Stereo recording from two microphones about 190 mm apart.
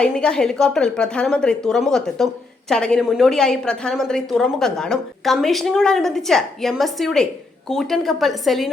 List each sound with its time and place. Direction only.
0.0 s a woman's voice: 5° left (ahead or behind)